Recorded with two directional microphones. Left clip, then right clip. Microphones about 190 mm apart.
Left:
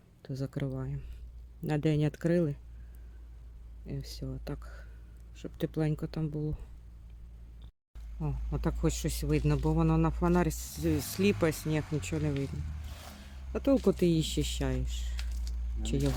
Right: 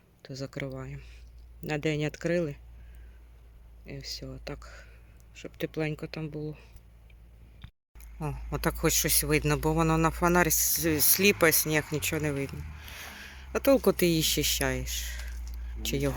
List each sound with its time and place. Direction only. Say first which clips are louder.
0.2 s speech: right 1 dB; 20° left (ahead or behind)
3.8 s speech: right 3 dB; 20° left (ahead or behind)
8.2 s speech: right 5 dB; centre (ahead or behind)